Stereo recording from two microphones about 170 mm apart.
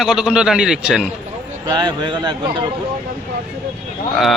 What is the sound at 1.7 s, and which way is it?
Speech, 25° right (ahead or behind).